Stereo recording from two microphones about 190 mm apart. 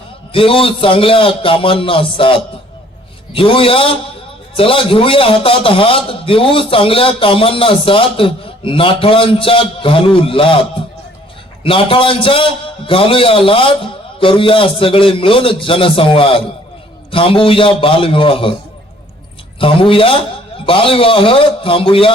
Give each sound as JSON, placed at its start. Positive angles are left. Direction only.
{"t": 0.3, "sound": "a man's voice", "side_deg": 30}
{"t": 11.6, "sound": "a man's voice", "side_deg": 30}
{"t": 19.5, "sound": "a man's voice", "side_deg": 30}